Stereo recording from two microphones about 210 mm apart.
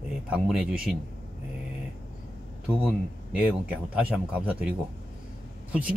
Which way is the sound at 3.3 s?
5° right (ahead or behind).